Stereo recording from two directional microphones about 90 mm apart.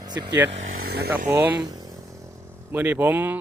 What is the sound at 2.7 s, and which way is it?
Speech, 20° right (ahead or behind).